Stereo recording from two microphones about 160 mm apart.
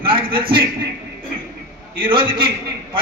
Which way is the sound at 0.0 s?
35° right (ahead or behind).